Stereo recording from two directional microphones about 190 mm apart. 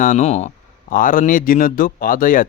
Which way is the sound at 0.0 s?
40° left (ahead or behind).